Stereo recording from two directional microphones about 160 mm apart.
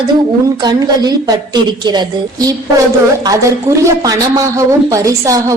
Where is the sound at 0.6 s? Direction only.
25° right (ahead or behind).